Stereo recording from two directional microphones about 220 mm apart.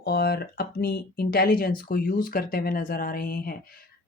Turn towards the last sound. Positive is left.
turn(degrees=40)  # may be behind; listen again after turning